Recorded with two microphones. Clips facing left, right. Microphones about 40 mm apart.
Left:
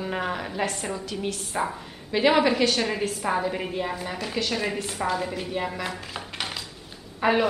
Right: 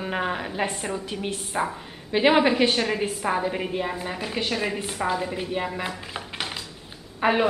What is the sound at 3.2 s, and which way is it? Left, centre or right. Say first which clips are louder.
A woman's voice: right 1 dB; centre.